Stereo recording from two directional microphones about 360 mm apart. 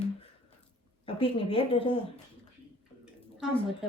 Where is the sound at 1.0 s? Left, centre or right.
Centre.